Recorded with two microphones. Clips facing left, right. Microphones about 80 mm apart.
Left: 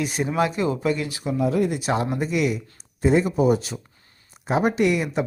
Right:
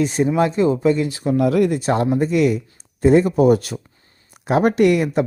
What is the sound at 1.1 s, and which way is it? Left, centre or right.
Speech, right.